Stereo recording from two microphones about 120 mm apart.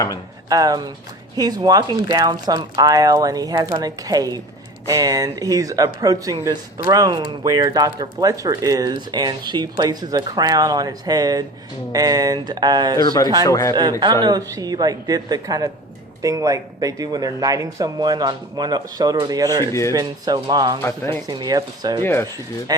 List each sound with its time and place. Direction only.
0.4 s speech: 30° right (ahead or behind)
13.0 s a man's voice: 35° left (ahead or behind)
14.0 s speech: 35° right (ahead or behind)
22.0 s a man's voice: 20° left (ahead or behind)